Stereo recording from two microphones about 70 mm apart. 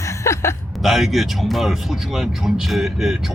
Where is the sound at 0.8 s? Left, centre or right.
Centre.